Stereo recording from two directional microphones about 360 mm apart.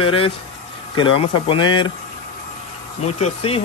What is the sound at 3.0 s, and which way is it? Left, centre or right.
Speech, centre.